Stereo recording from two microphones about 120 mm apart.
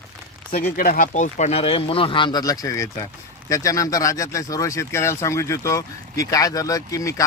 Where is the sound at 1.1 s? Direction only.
80° left.